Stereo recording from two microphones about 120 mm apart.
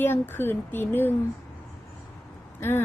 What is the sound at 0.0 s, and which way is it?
Speech, 20° left (ahead or behind).